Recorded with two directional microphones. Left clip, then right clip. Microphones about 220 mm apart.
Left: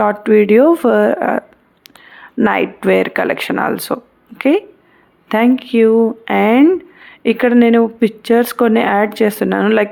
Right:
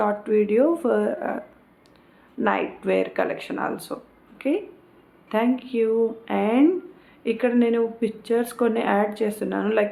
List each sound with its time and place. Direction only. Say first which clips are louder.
0.0 s speech: left 10 dB; 45° left (ahead or behind)